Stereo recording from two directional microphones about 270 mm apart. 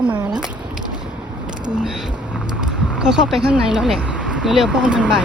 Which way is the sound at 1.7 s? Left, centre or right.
Centre.